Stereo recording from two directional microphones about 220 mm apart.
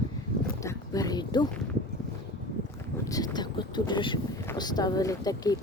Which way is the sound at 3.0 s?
15° left (ahead or behind).